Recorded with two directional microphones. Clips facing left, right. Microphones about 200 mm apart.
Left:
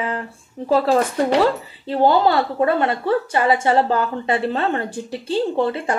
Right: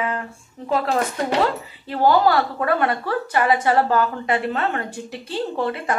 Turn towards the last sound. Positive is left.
turn(degrees=30)  # may be behind; listen again after turning